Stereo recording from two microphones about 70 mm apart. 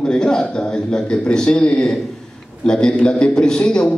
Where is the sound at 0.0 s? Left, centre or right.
Centre.